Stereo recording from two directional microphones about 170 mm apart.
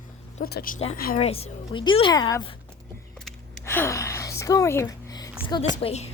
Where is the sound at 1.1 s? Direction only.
35° left (ahead or behind).